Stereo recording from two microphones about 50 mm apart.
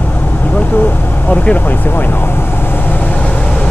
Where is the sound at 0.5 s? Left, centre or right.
Left.